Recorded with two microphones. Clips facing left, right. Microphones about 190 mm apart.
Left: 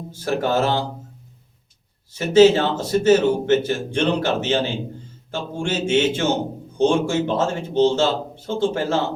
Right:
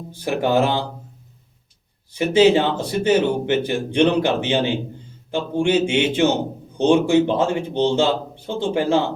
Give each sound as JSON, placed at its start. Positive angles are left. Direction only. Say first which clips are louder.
{"t": 0.1, "sound": "speech", "louder": "right 2 dB", "side_deg": -15}
{"t": 2.1, "sound": "speech", "louder": "left 1 dB", "side_deg": -15}